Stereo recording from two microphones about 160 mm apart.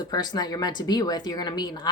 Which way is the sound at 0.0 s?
25° left (ahead or behind).